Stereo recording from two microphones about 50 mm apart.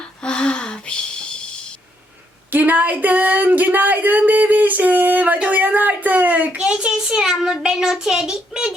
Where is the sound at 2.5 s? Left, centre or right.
Right.